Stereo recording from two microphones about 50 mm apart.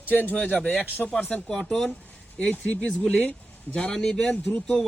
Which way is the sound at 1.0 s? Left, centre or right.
Centre.